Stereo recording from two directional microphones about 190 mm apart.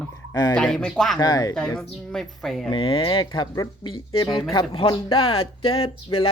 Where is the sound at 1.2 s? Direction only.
20° left (ahead or behind).